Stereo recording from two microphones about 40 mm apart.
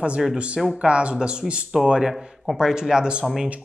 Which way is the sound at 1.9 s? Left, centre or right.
Right.